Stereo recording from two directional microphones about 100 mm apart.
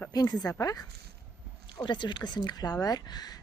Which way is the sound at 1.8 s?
50° left (ahead or behind).